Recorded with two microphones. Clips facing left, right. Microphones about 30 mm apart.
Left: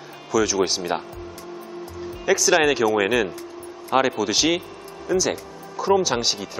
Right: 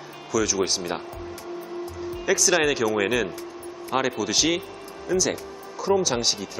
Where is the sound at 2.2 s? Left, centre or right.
Centre.